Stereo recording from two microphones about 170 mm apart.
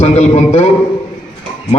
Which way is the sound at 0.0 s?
35° left (ahead or behind).